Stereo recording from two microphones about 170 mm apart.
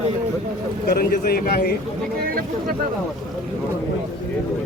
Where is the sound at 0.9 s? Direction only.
65° left (ahead or behind).